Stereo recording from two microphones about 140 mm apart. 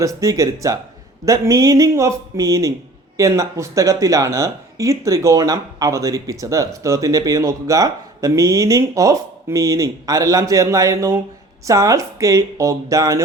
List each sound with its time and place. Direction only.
0.0 s speech: 25° right (ahead or behind)